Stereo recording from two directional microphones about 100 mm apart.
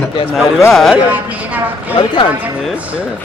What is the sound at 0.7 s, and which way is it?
Speech, centre (ahead or behind).